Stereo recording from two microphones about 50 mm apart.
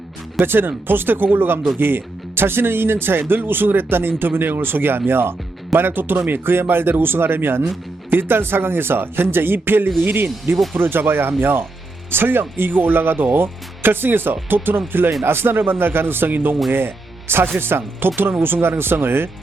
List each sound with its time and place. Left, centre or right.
0.3 s speech: right